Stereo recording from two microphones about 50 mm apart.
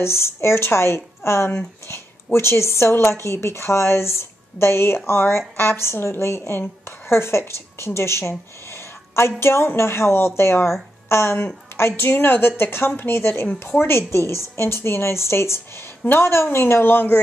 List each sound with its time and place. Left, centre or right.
0.0 s a woman's voice: left